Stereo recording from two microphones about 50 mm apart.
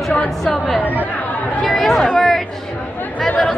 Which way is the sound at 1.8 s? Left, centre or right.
Centre.